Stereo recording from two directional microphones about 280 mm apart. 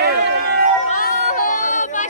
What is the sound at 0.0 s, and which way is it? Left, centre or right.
Run, right.